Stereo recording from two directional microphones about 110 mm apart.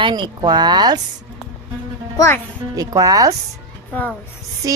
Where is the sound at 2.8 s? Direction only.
30° right (ahead or behind).